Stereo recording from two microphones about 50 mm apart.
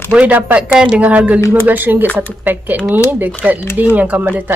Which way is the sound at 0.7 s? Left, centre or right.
Centre.